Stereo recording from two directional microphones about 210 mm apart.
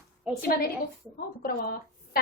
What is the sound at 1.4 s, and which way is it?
Speech, 45° left (ahead or behind).